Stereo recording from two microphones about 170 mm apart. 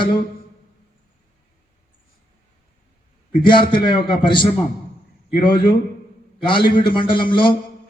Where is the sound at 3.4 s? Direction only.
30° left (ahead or behind).